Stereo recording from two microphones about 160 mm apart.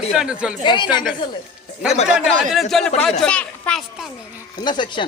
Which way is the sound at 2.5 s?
Centre (ahead or behind).